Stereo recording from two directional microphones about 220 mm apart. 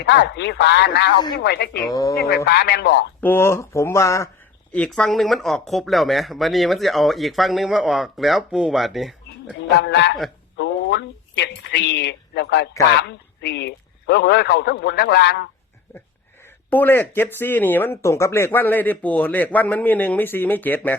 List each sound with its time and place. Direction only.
0.0 s a man's voice: 50° left (ahead or behind)
1.7 s speech: 15° left (ahead or behind)
2.1 s a man's voice: 45° left (ahead or behind)
3.2 s speech: 10° left (ahead or behind)
9.6 s a man's voice: 55° left (ahead or behind)
16.6 s speech: 10° left (ahead or behind)